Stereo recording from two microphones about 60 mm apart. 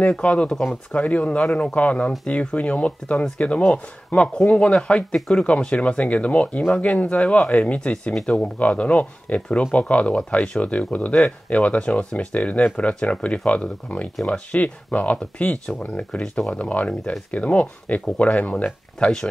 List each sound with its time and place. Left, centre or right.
0.0 s speech: centre